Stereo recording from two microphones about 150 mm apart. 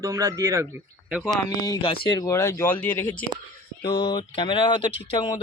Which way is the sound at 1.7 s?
35° left (ahead or behind).